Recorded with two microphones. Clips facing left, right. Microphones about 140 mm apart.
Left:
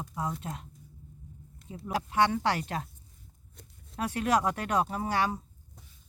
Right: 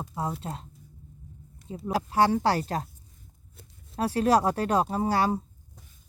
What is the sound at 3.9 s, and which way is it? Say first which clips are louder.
Speech: right 5 dB; 35° right (ahead or behind).